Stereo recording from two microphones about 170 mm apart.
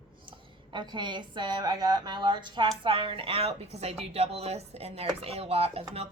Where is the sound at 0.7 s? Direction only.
25° right (ahead or behind).